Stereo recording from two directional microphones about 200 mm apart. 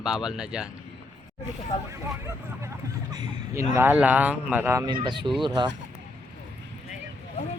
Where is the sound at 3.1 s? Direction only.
20° right (ahead or behind).